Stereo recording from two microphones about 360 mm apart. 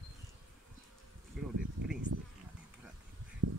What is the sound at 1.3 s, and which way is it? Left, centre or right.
Bee, centre.